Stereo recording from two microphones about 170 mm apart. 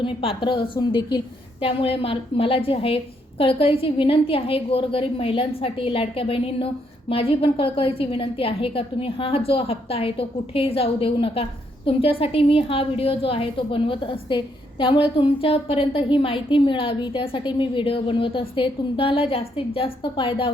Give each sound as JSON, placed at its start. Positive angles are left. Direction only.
{"t": 0.0, "sound": "a woman's voice", "side_deg": 30}